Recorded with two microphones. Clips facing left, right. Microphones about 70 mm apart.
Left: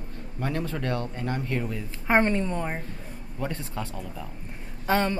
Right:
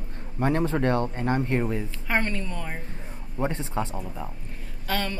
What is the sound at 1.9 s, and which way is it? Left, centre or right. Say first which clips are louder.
Speech: left 5 dB; left.